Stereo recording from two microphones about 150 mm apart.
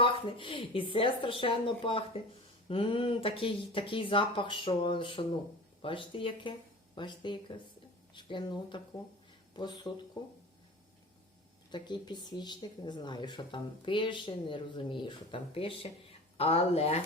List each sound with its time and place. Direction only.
0.0 s speech: 35° left (ahead or behind)
11.7 s speech: 30° left (ahead or behind)